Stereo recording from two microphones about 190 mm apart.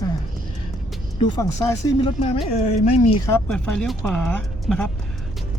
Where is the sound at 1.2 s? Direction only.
15° left (ahead or behind); by 3.1 s 30° left (ahead or behind).